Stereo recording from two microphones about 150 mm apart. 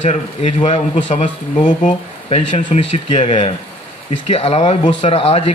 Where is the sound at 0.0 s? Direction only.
50° left (ahead or behind).